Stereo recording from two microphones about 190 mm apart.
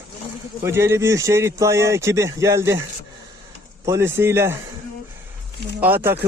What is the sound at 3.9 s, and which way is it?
Speech, 15° right (ahead or behind).